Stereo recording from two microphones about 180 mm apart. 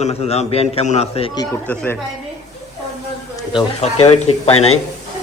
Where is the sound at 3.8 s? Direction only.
35° left (ahead or behind).